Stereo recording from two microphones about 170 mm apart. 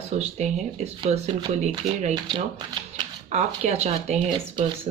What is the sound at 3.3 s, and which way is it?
Speech, 40° right (ahead or behind).